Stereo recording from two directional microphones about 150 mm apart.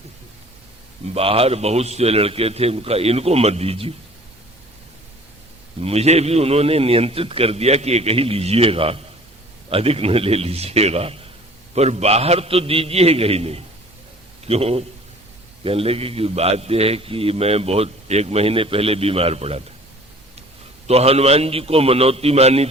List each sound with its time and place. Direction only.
1.0 s a man's voice: 40° right (ahead or behind)
5.8 s a man's voice: 45° right (ahead or behind)
20.8 s a man's voice: 45° right (ahead or behind)